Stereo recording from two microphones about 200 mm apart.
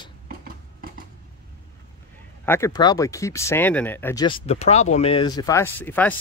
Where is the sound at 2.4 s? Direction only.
10° left (ahead or behind).